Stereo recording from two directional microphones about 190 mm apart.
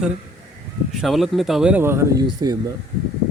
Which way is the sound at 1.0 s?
Centre (ahead or behind).